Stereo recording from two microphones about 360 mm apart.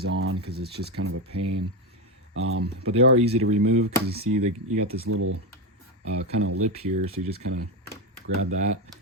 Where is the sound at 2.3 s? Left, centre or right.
Right; by 3.3 s centre.